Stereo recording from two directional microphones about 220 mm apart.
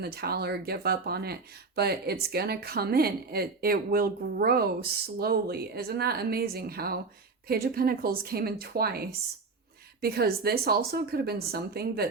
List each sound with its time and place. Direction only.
0.0 s speech: 45° right (ahead or behind)
10.0 s speech: 45° right (ahead or behind)